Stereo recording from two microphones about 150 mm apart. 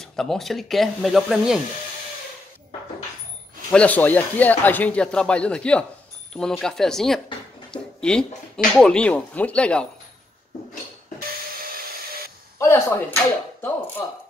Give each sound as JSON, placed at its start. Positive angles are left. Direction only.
{"t": 0.0, "sound": "speech", "side_deg": 5}
{"t": 3.7, "sound": "speech", "side_deg": 10}
{"t": 7.7, "sound": "a sound", "side_deg": 5}
{"t": 8.7, "sound": "speech", "side_deg": 5}
{"t": 12.5, "sound": "speech", "side_deg": 15}